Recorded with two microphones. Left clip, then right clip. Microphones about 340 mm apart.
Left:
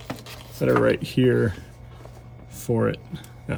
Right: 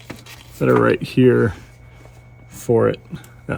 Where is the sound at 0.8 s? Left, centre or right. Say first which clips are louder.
Right 5 dB; centre.